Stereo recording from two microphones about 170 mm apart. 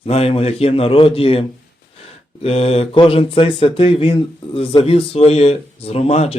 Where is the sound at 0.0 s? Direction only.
35° left (ahead or behind).